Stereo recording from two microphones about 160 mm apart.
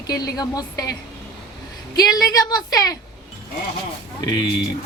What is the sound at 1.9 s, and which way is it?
Speech, 25° left (ahead or behind).